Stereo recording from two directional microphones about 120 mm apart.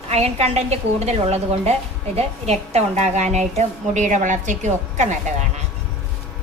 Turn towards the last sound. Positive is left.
turn(degrees=-80)